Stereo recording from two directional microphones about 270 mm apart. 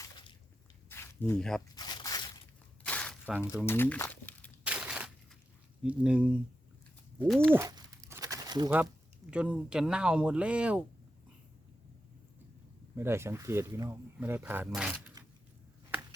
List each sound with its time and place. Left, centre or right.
0.0 s squish: centre
0.9 s a sound: centre
1.7 s a sound: centre
3.7 s crumpling: centre
5.8 s speech: centre
8.1 s crumpling: centre
9.3 s speech: centre
13.0 s speech: centre